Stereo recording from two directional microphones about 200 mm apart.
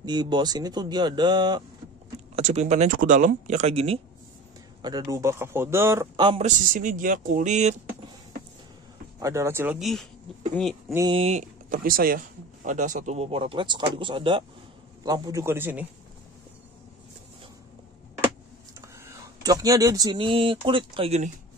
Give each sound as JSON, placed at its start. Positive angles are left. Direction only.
{"t": 0.0, "sound": "speech", "side_deg": -20}
{"t": 2.3, "sound": "speech", "side_deg": -35}
{"t": 4.8, "sound": "a man's voice", "side_deg": -20}
{"t": 6.2, "sound": "speech", "side_deg": -35}
{"t": 9.2, "sound": "a man's voice", "side_deg": -15}
{"t": 11.1, "sound": "a man's voice", "side_deg": -30}
{"t": 18.8, "sound": "speech", "side_deg": -15}